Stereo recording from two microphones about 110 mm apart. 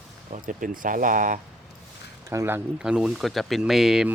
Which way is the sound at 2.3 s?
20° right (ahead or behind).